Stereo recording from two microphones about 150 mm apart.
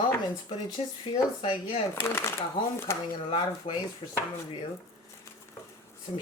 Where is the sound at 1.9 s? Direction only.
15° left (ahead or behind).